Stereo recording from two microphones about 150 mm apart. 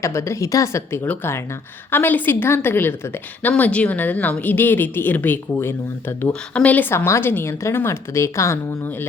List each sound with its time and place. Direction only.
0.0 s a woman's voice: 20° left (ahead or behind)